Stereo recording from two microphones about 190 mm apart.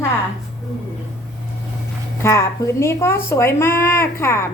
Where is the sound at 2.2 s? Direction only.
15° left (ahead or behind).